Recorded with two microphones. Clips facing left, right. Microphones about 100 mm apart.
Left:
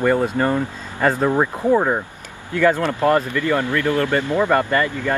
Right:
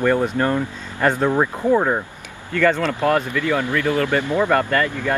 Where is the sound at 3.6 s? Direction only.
15° right (ahead or behind).